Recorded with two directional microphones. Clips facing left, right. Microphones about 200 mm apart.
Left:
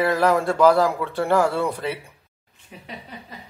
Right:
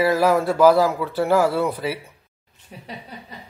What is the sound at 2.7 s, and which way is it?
Speech, 40° right (ahead or behind).